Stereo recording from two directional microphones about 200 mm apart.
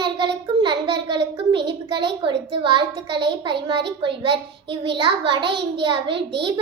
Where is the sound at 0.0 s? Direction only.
25° right (ahead or behind).